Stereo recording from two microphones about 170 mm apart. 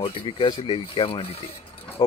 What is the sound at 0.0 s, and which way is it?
Speech, 30° left (ahead or behind).